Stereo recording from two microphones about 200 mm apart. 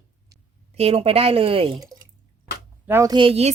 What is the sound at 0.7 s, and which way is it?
A woman's voice, 30° right (ahead or behind).